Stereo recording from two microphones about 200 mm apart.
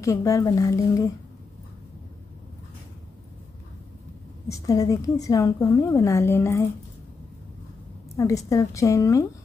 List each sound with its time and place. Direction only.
0.0 s a woman's voice: 15° left (ahead or behind)
4.5 s a woman's voice: 15° left (ahead or behind)
8.2 s a woman's voice: 15° left (ahead or behind)